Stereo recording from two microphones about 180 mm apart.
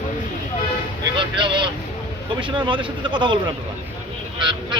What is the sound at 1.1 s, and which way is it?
Vehicle, 25° right (ahead or behind).